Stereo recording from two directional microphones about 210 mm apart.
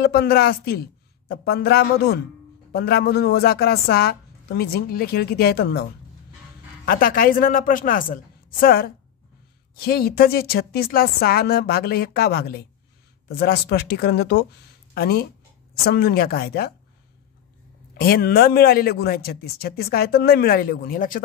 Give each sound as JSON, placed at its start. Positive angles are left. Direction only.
{"t": 0.0, "sound": "a man's voice", "side_deg": 45}
{"t": 6.9, "sound": "a man's voice", "side_deg": 45}
{"t": 17.9, "sound": "a man's voice", "side_deg": 45}